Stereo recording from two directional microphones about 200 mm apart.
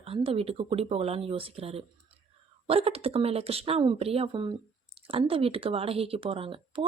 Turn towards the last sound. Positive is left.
turn(degrees=-25)  # may be behind; listen again after turning